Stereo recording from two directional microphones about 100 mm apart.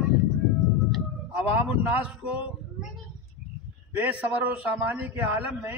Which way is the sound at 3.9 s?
15° right (ahead or behind).